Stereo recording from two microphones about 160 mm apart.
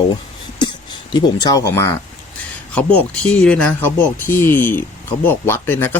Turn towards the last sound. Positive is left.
turn(degrees=15)  # may be behind; listen again after turning